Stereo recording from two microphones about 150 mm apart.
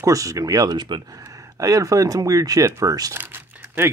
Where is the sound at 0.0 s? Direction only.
20° right (ahead or behind).